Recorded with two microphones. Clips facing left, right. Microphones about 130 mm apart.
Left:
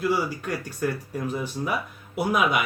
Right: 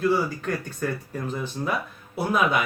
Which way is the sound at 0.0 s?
10° left (ahead or behind).